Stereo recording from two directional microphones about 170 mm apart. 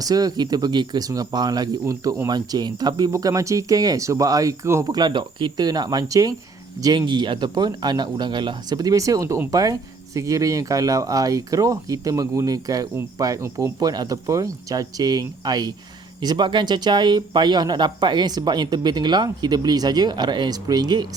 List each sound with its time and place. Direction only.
0.0 s speech: 20° right (ahead or behind)